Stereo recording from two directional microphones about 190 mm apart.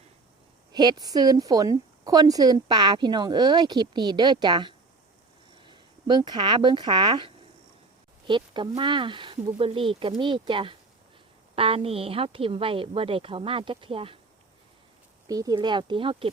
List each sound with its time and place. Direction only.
0.7 s a woman's voice: 20° right (ahead or behind)
15.3 s a woman's voice: 20° right (ahead or behind)